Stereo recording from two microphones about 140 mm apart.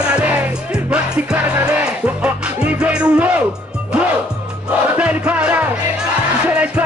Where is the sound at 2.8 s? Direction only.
10° right (ahead or behind).